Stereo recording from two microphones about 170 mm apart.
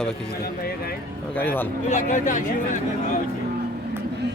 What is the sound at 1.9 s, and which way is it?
Speech, 45° left (ahead or behind).